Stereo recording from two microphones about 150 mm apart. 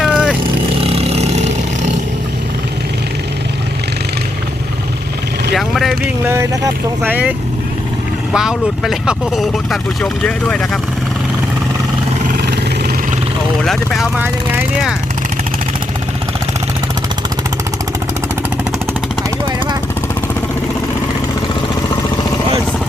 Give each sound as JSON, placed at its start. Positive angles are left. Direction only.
{"t": 0.0, "sound": "vehicle", "side_deg": -5}
{"t": 0.8, "sound": "vehicle", "side_deg": -40}
{"t": 5.5, "sound": "vehicle", "side_deg": 0}
{"t": 6.2, "sound": "speech", "side_deg": -15}
{"t": 12.3, "sound": "vehicle", "side_deg": -90}
{"t": 13.7, "sound": "speech", "side_deg": 0}